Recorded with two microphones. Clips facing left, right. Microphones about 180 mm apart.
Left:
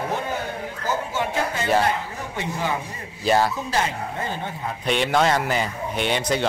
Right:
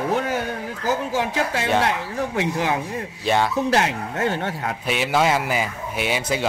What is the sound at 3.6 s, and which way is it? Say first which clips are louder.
A man's voice: right 4 dB; 75° right (ahead or behind).